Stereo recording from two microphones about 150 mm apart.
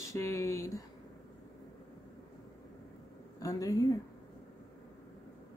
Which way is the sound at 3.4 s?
20° left (ahead or behind).